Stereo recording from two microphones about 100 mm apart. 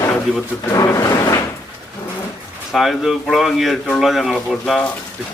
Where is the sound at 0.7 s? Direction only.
35° left (ahead or behind).